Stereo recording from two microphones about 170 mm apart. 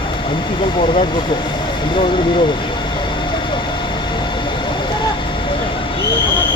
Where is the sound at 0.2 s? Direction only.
30° left (ahead or behind).